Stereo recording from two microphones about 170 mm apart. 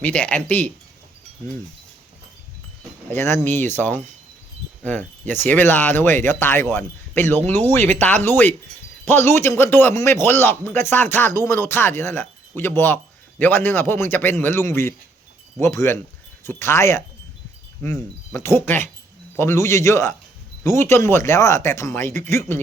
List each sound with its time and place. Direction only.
0.0 s speech: 10° left (ahead or behind)
3.1 s speech: 15° left (ahead or behind)